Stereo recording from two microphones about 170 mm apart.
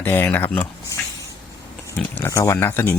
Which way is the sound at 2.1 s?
15° left (ahead or behind).